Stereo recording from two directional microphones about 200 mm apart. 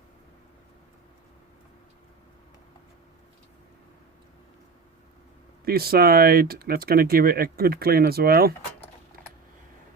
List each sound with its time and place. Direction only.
5.6 s speech: 50° right (ahead or behind)